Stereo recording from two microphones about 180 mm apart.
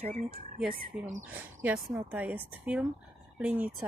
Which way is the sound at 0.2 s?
40° right (ahead or behind).